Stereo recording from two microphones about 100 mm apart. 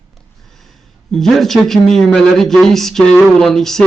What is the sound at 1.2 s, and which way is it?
Speech, centre (ahead or behind).